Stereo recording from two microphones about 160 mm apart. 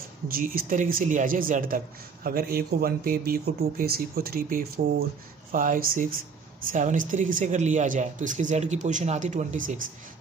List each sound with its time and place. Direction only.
0.3 s speech: 60° right (ahead or behind)